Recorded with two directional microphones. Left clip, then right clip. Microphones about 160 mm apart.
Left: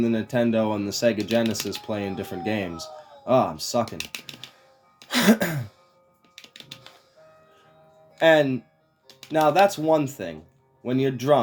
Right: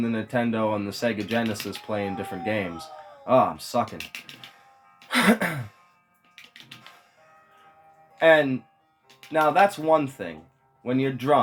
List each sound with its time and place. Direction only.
0.0 s speech: 90° left
4.9 s music: 90° left
8.2 s speech: 90° left